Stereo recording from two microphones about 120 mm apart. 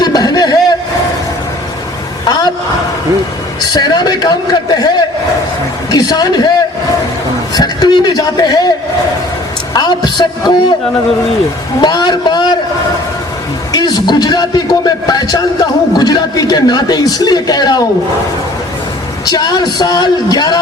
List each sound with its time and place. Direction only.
0.0 s a sound: 35° left (ahead or behind)
2.2 s a sound: 35° left (ahead or behind)
3.6 s a man's voice: 35° left (ahead or behind)
5.9 s a man's voice: 30° left (ahead or behind)
7.5 s a man's voice: 35° left (ahead or behind)
9.7 s a man's voice: 35° left (ahead or behind)
11.8 s a man's voice: 35° left (ahead or behind)
13.7 s a man's voice: 35° left (ahead or behind)
19.2 s a man's voice: 35° left (ahead or behind)